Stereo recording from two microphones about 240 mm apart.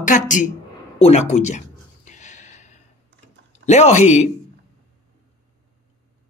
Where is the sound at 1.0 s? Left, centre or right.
Left.